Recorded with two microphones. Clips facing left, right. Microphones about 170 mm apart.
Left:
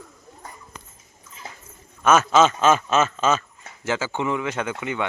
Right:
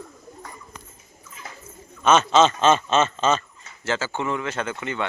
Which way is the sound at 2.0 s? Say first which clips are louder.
Even; 5° left (ahead or behind).